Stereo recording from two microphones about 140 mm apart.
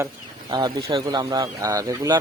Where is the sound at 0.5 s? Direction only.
35° right (ahead or behind).